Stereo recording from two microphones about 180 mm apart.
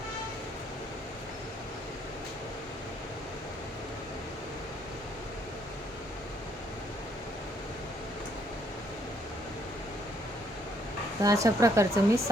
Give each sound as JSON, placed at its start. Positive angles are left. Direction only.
{"t": 11.2, "sound": "speech", "side_deg": -20}